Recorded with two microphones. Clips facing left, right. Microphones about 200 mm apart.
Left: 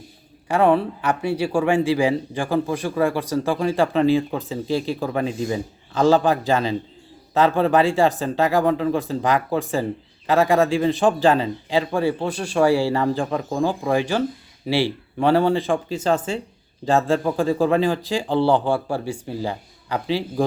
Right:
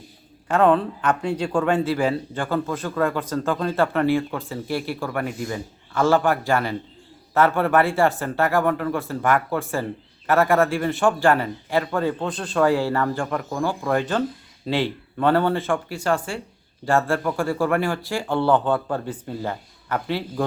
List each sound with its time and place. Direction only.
0.4 s speech: 10° left (ahead or behind)